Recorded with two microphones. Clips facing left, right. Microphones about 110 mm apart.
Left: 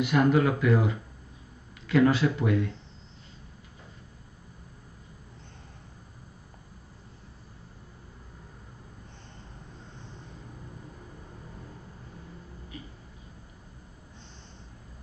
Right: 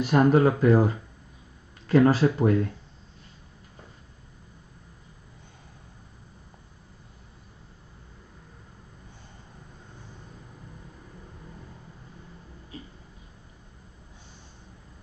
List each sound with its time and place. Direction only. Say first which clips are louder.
0.0 s speech: right 3 dB; 35° right (ahead or behind)